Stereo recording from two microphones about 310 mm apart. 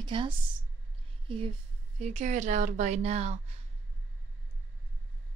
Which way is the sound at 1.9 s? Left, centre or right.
Right.